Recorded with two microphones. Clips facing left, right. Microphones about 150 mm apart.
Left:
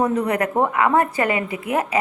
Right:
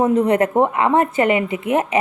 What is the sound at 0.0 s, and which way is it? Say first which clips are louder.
A woman's voice: right 5 dB; 25° right (ahead or behind).